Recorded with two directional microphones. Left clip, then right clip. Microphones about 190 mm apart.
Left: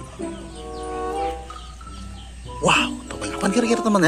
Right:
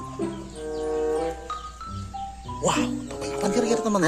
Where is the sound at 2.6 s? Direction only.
Centre (ahead or behind).